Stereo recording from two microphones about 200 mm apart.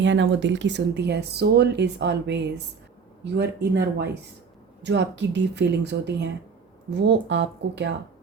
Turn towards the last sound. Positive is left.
turn(degrees=-60)  # may be behind; listen again after turning